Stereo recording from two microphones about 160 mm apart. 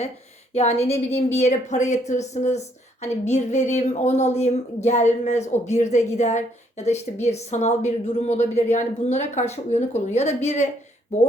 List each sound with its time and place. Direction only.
0.5 s a woman's voice: 40° left (ahead or behind)